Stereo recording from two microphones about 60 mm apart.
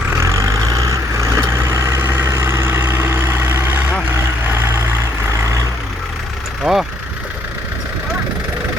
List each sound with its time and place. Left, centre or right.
0.2 s vehicle: right
4.1 s vehicle: right
6.6 s vehicle: centre